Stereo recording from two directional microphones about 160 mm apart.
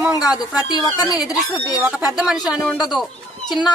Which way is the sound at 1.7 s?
5° right (ahead or behind).